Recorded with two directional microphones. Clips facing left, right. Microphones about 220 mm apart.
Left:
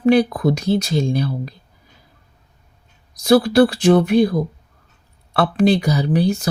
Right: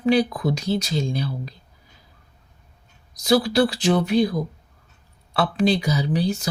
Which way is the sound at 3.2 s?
55° left (ahead or behind).